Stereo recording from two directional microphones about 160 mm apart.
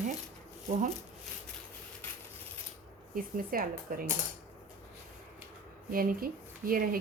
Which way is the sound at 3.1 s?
65° right (ahead or behind).